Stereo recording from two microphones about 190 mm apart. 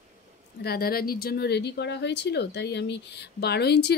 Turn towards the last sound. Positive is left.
turn(degrees=60)  # may be behind; listen again after turning